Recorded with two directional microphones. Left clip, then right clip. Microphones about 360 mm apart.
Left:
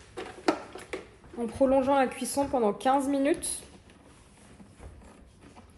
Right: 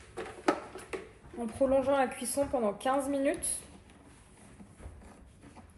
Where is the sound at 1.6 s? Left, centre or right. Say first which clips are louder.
Left 3 dB; left.